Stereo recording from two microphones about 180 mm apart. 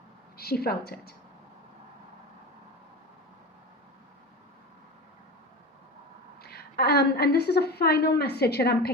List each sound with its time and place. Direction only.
0.3 s a woman's voice: 60° left (ahead or behind)
6.4 s a woman's voice: 60° left (ahead or behind)